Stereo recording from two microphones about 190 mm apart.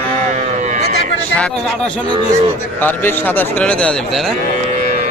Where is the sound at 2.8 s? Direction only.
10° left (ahead or behind).